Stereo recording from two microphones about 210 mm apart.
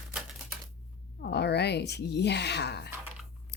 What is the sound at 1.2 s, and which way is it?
Speech, 50° left (ahead or behind).